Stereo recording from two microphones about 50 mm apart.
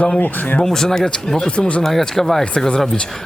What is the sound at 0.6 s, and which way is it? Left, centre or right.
Speech, centre.